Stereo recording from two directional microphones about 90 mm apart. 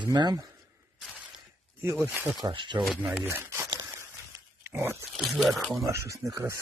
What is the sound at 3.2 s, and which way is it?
Speech, 30° right (ahead or behind).